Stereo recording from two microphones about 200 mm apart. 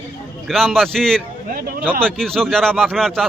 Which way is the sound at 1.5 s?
45° right (ahead or behind).